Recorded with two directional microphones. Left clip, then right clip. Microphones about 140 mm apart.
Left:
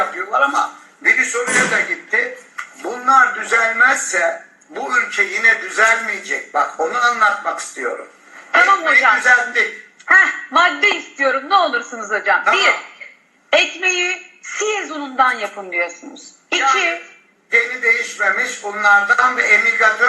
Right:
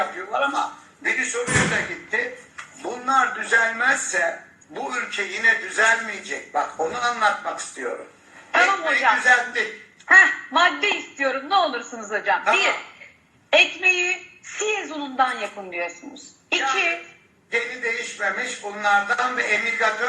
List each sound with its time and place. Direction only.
0.0 s a man's voice: 30° left (ahead or behind)